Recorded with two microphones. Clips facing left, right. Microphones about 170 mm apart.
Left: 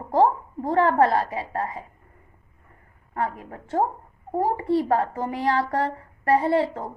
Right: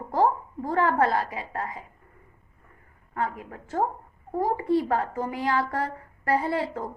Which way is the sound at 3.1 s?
30° left (ahead or behind).